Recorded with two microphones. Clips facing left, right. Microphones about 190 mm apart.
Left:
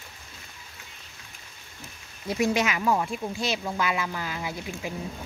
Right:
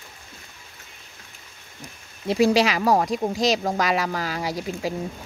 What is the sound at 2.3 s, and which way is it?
Speech, 30° right (ahead or behind).